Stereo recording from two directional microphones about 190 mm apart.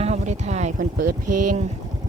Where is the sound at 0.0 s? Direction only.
35° right (ahead or behind).